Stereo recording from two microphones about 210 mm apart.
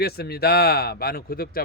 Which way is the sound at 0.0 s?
50° left (ahead or behind).